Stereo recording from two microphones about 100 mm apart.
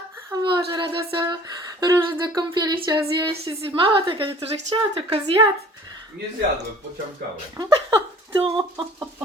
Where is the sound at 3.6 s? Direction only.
55° right (ahead or behind).